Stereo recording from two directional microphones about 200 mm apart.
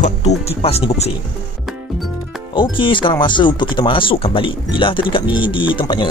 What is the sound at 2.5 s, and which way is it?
A man's voice, 25° left (ahead or behind).